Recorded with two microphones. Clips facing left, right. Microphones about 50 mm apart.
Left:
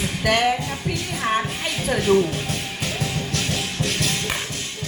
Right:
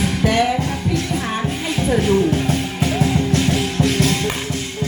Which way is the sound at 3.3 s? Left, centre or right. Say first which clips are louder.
Right 7 dB; right.